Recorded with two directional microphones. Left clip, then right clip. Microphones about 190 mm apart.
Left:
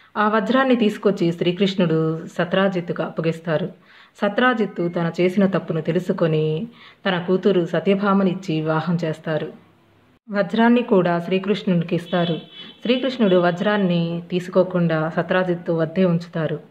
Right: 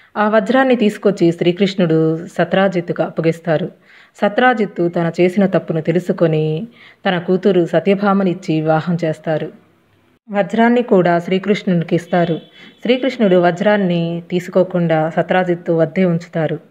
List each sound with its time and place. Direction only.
0.1 s a woman's voice: 20° right (ahead or behind)